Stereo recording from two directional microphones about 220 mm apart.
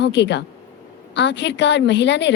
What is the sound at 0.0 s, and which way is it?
A woman's voice, 50° left (ahead or behind).